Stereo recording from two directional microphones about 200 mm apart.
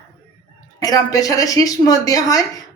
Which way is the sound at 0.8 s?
20° left (ahead or behind).